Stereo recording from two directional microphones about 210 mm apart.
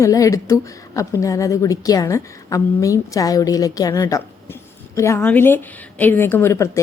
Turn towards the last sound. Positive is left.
turn(degrees=15)  # may be behind; listen again after turning